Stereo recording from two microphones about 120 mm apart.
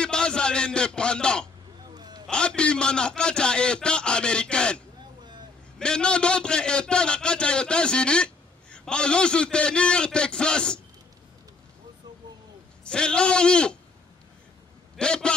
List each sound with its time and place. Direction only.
0.0 s a man's voice: 5° left (ahead or behind)
2.0 s a sound: 35° right (ahead or behind)
2.2 s a man's voice: 10° left (ahead or behind)
12.8 s a man's voice: 10° left (ahead or behind)
15.0 s a man's voice: 5° left (ahead or behind)